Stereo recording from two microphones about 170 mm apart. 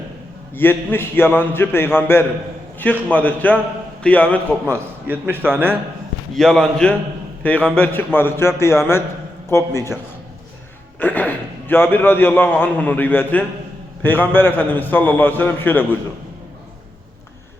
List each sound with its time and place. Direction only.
0.5 s a man's voice: 10° left (ahead or behind)
4.6 s a man's voice: 10° right (ahead or behind)
6.3 s a man's voice: 5° left (ahead or behind)
11.0 s a man's voice: 10° left (ahead or behind)